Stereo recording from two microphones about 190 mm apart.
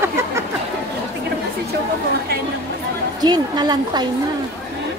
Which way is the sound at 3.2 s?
20° right (ahead or behind).